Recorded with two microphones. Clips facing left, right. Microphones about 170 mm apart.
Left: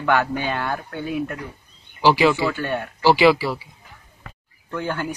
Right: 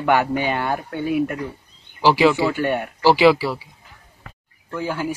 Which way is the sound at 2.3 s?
20° right (ahead or behind).